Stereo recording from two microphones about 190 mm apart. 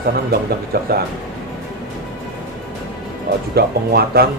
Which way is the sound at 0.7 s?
55° right (ahead or behind).